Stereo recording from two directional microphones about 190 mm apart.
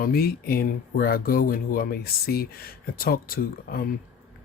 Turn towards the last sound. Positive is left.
turn(degrees=50)  # may be behind; listen again after turning